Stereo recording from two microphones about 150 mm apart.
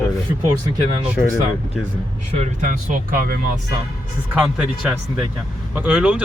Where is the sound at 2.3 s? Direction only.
50° right (ahead or behind); by 3.4 s 85° right.